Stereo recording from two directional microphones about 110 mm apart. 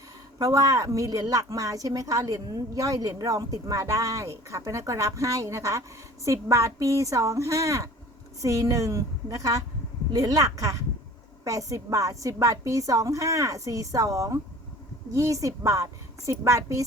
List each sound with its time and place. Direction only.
0.3 s a woman's voice: 35° right (ahead or behind)